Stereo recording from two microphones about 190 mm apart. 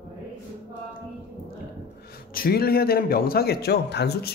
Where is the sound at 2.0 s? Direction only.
50° left (ahead or behind).